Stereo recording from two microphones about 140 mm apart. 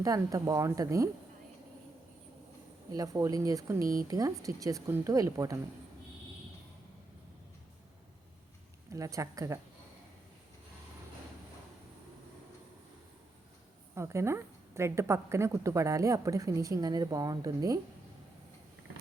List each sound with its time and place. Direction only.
0.0 s a woman's voice: 25° right (ahead or behind)
2.9 s a woman's voice: 25° right (ahead or behind)
8.9 s a woman's voice: 20° right (ahead or behind)
13.9 s a woman's voice: 20° right (ahead or behind)